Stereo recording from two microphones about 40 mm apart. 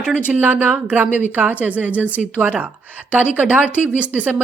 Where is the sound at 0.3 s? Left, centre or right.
Right.